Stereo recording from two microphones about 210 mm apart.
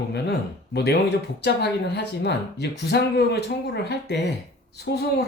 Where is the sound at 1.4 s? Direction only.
55° left (ahead or behind).